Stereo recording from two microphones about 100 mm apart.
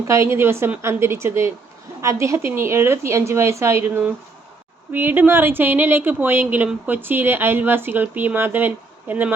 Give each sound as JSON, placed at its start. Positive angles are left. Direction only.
{"t": 0.1, "sound": "speech", "side_deg": -25}
{"t": 3.8, "sound": "speech", "side_deg": -15}